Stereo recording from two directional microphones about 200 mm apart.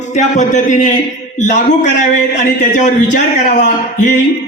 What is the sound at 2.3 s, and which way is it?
Speech, 40° left (ahead or behind).